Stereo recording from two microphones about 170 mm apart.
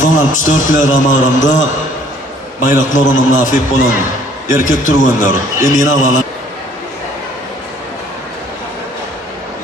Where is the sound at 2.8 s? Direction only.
50° left (ahead or behind).